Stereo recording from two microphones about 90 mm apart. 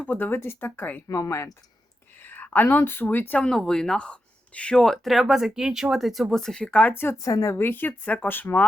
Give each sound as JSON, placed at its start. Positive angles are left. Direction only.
{"t": 0.0, "sound": "speech", "side_deg": 20}
{"t": 1.0, "sound": "speech", "side_deg": 40}
{"t": 2.1, "sound": "speech", "side_deg": 20}
{"t": 3.3, "sound": "speech", "side_deg": 10}
{"t": 7.3, "sound": "speech", "side_deg": 35}